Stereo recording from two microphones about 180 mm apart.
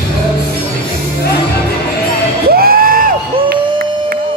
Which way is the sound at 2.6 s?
55° right (ahead or behind).